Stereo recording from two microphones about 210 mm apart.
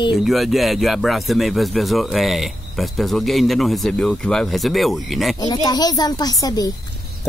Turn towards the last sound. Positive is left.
turn(degrees=20)  # may be behind; listen again after turning